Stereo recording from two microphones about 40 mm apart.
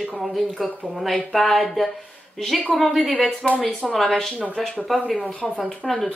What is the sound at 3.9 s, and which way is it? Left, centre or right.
Speech, centre.